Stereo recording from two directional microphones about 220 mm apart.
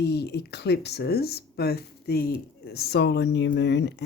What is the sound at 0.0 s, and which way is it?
Speech, 50° left (ahead or behind).